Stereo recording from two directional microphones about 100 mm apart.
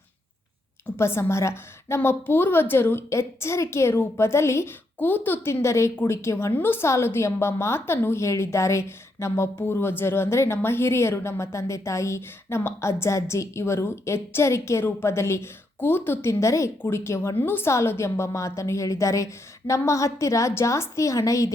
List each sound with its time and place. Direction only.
0.9 s a woman's voice: 25° left (ahead or behind)